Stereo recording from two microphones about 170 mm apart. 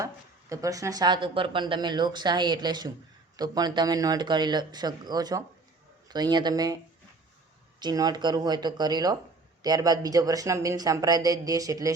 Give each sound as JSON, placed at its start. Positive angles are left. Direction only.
{"t": 0.0, "sound": "speech", "side_deg": -20}
{"t": 7.8, "sound": "speech", "side_deg": -25}